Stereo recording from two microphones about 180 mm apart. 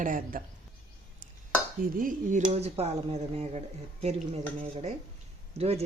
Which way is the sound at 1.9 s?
50° right (ahead or behind).